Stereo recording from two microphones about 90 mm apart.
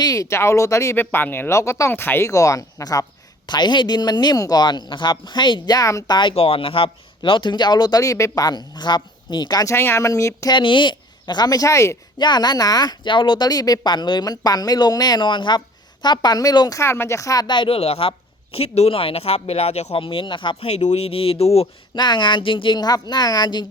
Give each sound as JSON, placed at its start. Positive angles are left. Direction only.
{"t": 0.0, "sound": "speech", "side_deg": 40}
{"t": 0.9, "sound": "speech", "side_deg": 25}
{"t": 6.1, "sound": "speech", "side_deg": 60}
{"t": 9.6, "sound": "speech", "side_deg": 30}
{"t": 10.5, "sound": "speech", "side_deg": 65}
{"t": 12.2, "sound": "speech", "side_deg": 50}
{"t": 16.8, "sound": "speech", "side_deg": 30}
{"t": 17.4, "sound": "speech", "side_deg": 60}
{"t": 21.9, "sound": "a woman's voice", "side_deg": 55}